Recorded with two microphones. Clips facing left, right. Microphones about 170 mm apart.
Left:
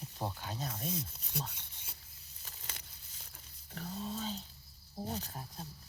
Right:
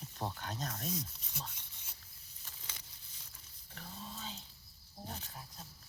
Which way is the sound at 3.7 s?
40° left (ahead or behind).